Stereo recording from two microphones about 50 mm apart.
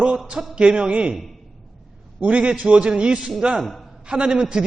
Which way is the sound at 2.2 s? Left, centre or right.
Right.